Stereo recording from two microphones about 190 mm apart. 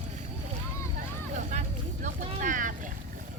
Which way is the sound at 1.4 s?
40° right (ahead or behind).